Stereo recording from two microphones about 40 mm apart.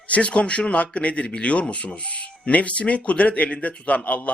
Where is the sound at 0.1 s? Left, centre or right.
Left.